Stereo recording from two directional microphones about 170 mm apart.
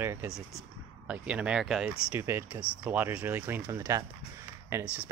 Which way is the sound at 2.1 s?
15° right (ahead or behind).